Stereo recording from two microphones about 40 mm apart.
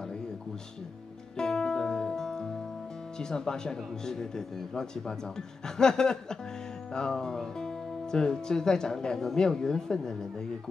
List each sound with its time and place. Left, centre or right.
1.3 s music: centre
3.2 s speech: centre